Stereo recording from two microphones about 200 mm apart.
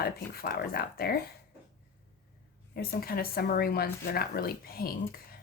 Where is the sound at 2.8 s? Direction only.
50° left (ahead or behind).